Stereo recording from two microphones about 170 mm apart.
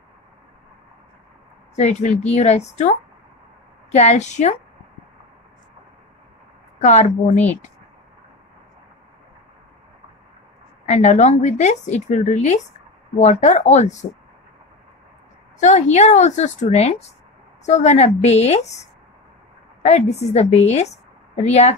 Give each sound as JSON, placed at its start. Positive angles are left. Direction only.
{"t": 1.8, "sound": "a woman's voice", "side_deg": 40}
{"t": 6.9, "sound": "a woman's voice", "side_deg": 40}
{"t": 10.9, "sound": "a woman's voice", "side_deg": 45}
{"t": 15.6, "sound": "a woman's voice", "side_deg": 40}